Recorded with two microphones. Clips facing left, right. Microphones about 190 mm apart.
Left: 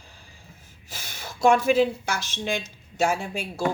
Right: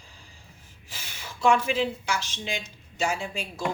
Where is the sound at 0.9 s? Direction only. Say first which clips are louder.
Left 3 dB; 40° left (ahead or behind).